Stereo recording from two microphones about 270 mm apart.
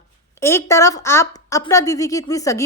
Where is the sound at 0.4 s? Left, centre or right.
Centre.